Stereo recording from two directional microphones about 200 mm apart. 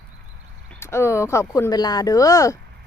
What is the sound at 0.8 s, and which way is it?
Speech, 15° left (ahead or behind).